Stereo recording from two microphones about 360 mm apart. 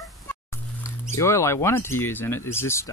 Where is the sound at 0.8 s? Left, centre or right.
Centre.